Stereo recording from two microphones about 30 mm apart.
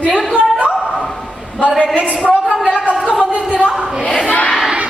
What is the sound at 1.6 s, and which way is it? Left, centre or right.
Speech, right.